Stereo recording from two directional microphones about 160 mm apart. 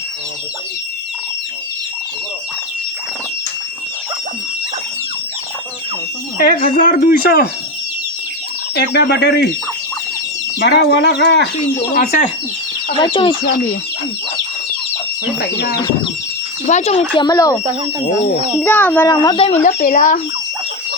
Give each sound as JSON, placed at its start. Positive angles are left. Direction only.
{"t": 6.4, "sound": "a man's voice", "side_deg": 60}
{"t": 8.7, "sound": "speech", "side_deg": 90}
{"t": 10.6, "sound": "speech", "side_deg": 90}
{"t": 11.9, "sound": "speech", "side_deg": 55}
{"t": 12.9, "sound": "speech", "side_deg": 30}
{"t": 16.6, "sound": "speech", "side_deg": 45}
{"t": 17.2, "sound": "speech", "side_deg": 25}
{"t": 18.6, "sound": "speech", "side_deg": 10}
{"t": 19.0, "sound": "speech", "side_deg": 25}
{"t": 19.5, "sound": "a man's voice", "side_deg": 55}